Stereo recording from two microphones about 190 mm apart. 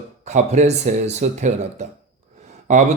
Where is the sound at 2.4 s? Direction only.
40° right (ahead or behind).